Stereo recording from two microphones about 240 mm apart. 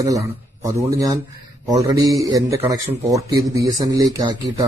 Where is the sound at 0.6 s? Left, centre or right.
Centre.